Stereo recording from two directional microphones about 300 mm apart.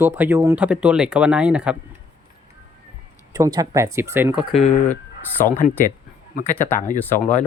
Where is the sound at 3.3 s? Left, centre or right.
Centre.